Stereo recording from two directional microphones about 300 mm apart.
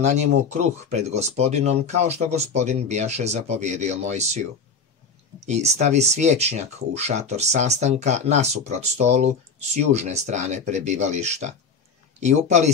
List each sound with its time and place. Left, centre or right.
0.0 s speech: right
5.5 s speech: right